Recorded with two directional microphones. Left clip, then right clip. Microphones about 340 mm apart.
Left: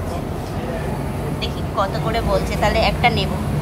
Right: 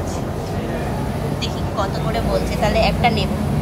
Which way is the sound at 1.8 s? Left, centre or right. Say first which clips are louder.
Left 2 dB; centre.